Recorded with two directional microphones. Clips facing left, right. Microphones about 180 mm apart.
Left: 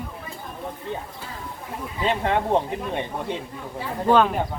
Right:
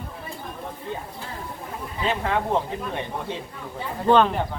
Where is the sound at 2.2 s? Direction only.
20° left (ahead or behind).